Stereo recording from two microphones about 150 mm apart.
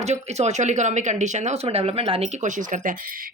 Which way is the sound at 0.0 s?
45° right (ahead or behind).